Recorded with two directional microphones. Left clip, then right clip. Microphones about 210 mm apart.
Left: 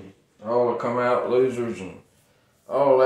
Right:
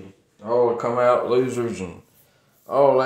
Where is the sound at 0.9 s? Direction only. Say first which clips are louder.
Right 3 dB; 55° right (ahead or behind).